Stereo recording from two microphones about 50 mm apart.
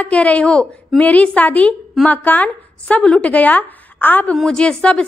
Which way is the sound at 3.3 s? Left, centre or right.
Left.